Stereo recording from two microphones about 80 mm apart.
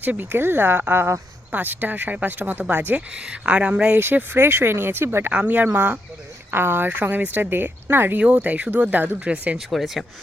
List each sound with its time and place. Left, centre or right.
0.0 s speech: right
3.2 s speech: centre
3.9 s speech: right
5.3 s speech: centre
9.6 s speech: centre